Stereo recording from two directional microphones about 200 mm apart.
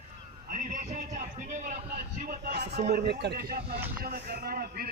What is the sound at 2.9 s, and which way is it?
Speech, 55° right (ahead or behind).